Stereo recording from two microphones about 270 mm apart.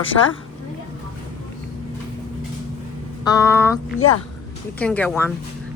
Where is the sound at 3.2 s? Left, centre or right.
Centre.